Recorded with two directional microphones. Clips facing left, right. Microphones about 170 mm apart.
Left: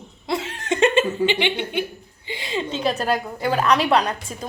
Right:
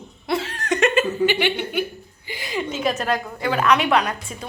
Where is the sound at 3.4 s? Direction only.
35° left (ahead or behind).